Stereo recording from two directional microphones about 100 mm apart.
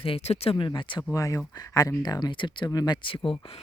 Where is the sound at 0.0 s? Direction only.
80° left.